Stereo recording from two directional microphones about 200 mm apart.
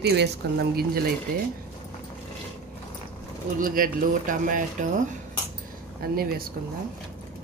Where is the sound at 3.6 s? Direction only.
45° right (ahead or behind).